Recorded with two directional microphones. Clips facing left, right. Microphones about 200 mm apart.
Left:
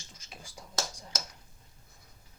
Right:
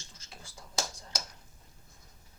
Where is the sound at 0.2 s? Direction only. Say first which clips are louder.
Left 2 dB; 15° left (ahead or behind).